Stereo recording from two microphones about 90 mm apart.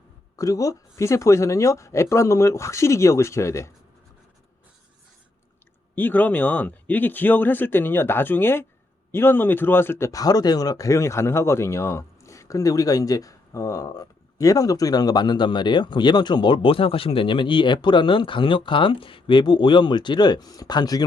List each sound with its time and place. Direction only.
0.3 s speech: 40° left (ahead or behind)
5.9 s speech: 20° left (ahead or behind)
10.1 s speech: 45° left (ahead or behind)